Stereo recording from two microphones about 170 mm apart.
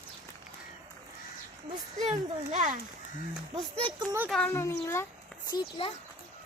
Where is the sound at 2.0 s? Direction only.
45° right (ahead or behind).